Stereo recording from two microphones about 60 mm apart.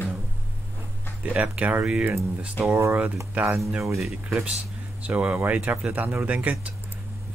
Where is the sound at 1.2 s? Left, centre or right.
Right.